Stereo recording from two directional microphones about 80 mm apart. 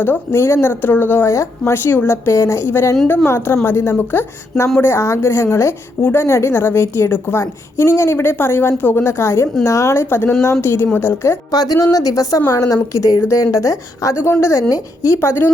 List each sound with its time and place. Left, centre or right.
0.0 s speech: left
1.3 s a woman's voice: left
11.5 s a woman's voice: left
15.2 s a woman's voice: left